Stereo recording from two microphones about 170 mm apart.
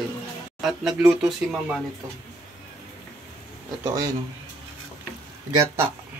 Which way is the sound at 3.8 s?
20° right (ahead or behind).